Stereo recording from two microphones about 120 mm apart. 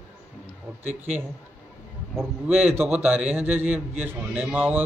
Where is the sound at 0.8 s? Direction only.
15° right (ahead or behind).